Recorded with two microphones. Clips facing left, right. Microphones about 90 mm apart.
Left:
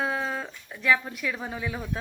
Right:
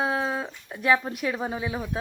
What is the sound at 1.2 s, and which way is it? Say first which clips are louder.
Speech: right 4 dB; 30° right (ahead or behind).